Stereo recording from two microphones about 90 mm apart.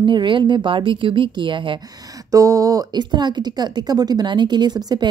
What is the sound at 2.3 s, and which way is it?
A woman's voice, 40° right (ahead or behind).